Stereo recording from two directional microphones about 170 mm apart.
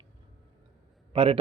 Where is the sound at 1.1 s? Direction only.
35° right (ahead or behind).